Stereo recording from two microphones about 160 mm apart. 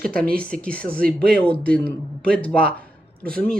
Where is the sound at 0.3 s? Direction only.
65° right (ahead or behind).